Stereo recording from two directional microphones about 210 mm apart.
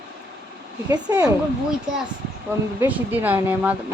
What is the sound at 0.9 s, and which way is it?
Speech, 20° right (ahead or behind).